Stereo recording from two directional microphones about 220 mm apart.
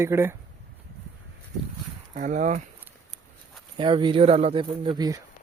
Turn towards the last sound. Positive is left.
turn(degrees=-15)  # may be behind; listen again after turning